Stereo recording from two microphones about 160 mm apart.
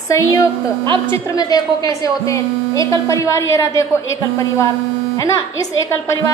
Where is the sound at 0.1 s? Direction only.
20° left (ahead or behind).